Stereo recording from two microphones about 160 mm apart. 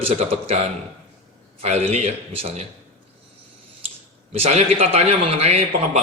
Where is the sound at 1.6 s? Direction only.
40° right (ahead or behind).